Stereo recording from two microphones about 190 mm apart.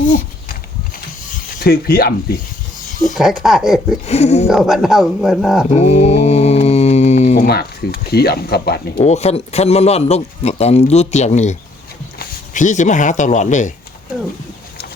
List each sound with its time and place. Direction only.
1.5 s speech: 55° left (ahead or behind)
3.2 s speech: centre (ahead or behind)
4.0 s speech: 35° left (ahead or behind)
4.4 s speech: centre (ahead or behind)
5.7 s mantra: 35° left (ahead or behind)
7.4 s speech: 55° left (ahead or behind)
9.0 s speech: 35° left (ahead or behind)